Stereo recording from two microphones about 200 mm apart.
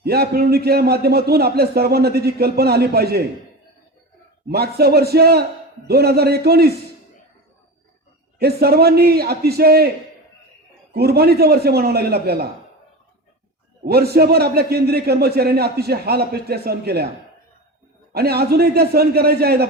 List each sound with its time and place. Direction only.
0.0 s a man's voice: 50° right (ahead or behind)
4.4 s a man's voice: 50° right (ahead or behind)
8.4 s a man's voice: 50° right (ahead or behind)
10.9 s a man's voice: 50° right (ahead or behind)
13.8 s a man's voice: 50° right (ahead or behind)
18.1 s a man's voice: 50° right (ahead or behind)